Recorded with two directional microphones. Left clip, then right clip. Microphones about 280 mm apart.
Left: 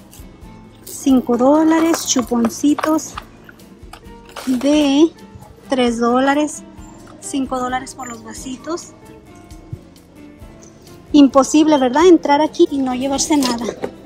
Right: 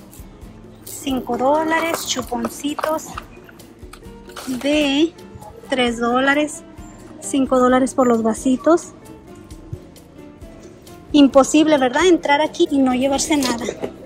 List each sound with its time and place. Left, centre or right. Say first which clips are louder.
1.0 s speech: left 5 dB; left
4.3 s music: left 6 dB; centre
4.6 s speech: left 3 dB; centre
11.1 s speech: left 1 dB; centre